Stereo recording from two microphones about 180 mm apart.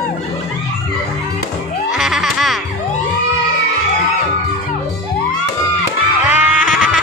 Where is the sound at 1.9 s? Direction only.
Centre (ahead or behind).